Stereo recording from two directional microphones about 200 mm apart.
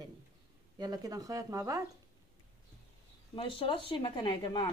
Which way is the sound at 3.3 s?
25° left (ahead or behind).